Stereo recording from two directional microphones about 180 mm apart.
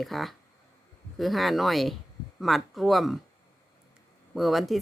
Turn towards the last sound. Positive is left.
turn(degrees=0)  # may be behind; listen again after turning